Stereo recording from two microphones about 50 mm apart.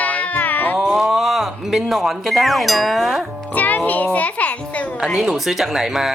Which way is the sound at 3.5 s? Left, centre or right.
Left.